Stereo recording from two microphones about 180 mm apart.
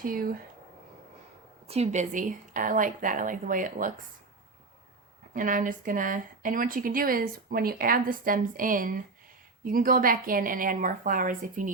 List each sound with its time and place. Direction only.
0.0 s speech: 50° right (ahead or behind)
1.6 s speech: 35° right (ahead or behind)
5.3 s speech: 45° right (ahead or behind)